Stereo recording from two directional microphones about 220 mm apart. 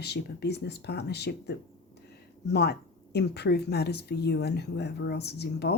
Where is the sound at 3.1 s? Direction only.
50° left (ahead or behind).